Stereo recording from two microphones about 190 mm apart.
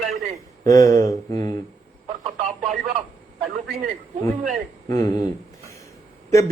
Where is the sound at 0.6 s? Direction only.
15° left (ahead or behind).